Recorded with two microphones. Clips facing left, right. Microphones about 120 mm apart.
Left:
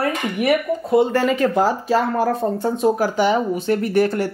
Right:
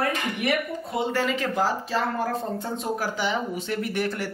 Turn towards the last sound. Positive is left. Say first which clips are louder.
# left 9 dB
turn(degrees=45)  # may be behind; listen again after turning